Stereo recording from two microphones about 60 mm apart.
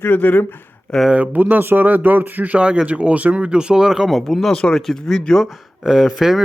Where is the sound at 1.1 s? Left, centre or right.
Right; by 4.5 s centre.